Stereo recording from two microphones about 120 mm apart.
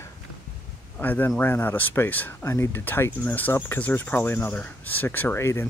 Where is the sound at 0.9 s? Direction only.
15° left (ahead or behind).